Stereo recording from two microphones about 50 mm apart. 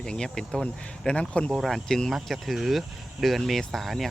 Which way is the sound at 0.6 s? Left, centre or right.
Left.